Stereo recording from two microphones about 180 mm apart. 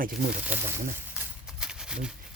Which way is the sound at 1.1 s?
5° right (ahead or behind).